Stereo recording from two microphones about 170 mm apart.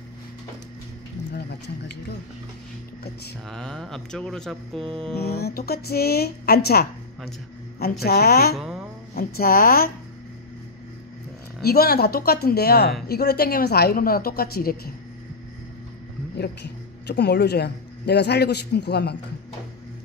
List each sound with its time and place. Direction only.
3.4 s speech: 5° left (ahead or behind)
4.7 s music: 35° right (ahead or behind)
5.1 s speech: 70° left (ahead or behind)
8.0 s a woman's voice: 65° left (ahead or behind)
8.5 s a woman's voice: centre (ahead or behind)
9.1 s a woman's voice: 60° left (ahead or behind)
11.6 s a woman's voice: 65° left (ahead or behind)
16.3 s speech: 80° left